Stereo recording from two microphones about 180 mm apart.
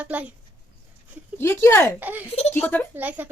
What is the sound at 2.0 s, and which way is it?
Speech, 10° right (ahead or behind).